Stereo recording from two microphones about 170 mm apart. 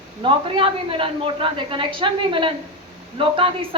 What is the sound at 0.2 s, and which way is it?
A woman's voice, 30° right (ahead or behind).